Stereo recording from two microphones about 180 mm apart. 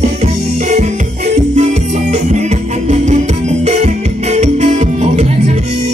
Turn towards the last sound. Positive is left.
turn(degrees=-40)  # may be behind; listen again after turning